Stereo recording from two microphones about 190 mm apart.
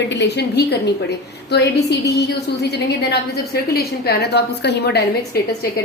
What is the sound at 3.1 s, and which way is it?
A woman's voice, 55° left (ahead or behind).